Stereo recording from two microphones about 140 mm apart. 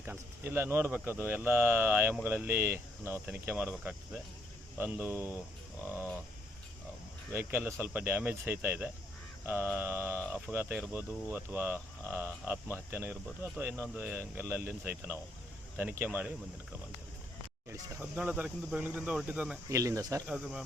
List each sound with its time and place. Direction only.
0.0 s speech: 15° right (ahead or behind)
7.3 s speech: 15° right (ahead or behind)
17.7 s speech: 15° right (ahead or behind)
19.6 s speech: 25° right (ahead or behind)
20.2 s speech: 5° right (ahead or behind)